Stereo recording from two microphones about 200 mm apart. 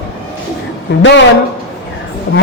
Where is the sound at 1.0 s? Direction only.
65° left (ahead or behind).